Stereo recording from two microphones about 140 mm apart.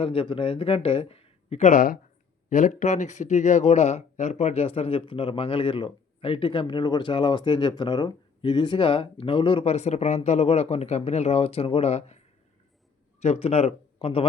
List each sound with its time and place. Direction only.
0.0 s speech: 40° left (ahead or behind); by 2.0 s 75° left (ahead or behind)
2.5 s speech: 65° left (ahead or behind); by 14.3 s 45° left (ahead or behind)